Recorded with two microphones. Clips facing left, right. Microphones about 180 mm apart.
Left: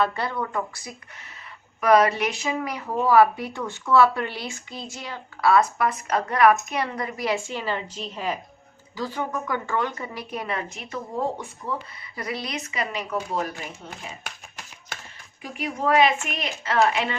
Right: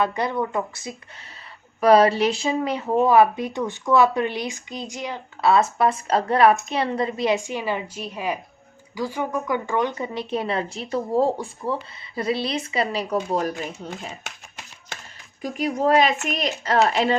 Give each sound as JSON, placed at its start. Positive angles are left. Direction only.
{"t": 0.0, "sound": "a woman's voice", "side_deg": -20}
{"t": 15.4, "sound": "a woman's voice", "side_deg": -40}